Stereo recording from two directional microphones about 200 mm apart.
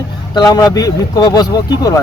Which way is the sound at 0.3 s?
20° left (ahead or behind).